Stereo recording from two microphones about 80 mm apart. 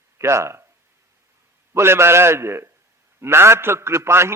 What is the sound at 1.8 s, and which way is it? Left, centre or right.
A man's voice, right.